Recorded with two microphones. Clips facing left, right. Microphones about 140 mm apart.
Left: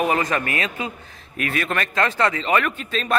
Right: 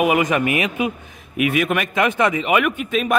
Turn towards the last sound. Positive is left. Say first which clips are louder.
# right 5 dB
turn(degrees=-15)  # may be behind; listen again after turning